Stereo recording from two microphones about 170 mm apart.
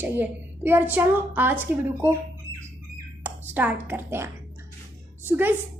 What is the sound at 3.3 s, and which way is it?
Speech, 10° right (ahead or behind).